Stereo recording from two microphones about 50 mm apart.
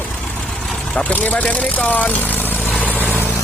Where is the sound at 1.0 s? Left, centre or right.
Left.